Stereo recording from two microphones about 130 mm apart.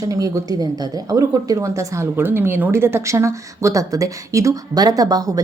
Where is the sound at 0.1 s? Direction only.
30° right (ahead or behind).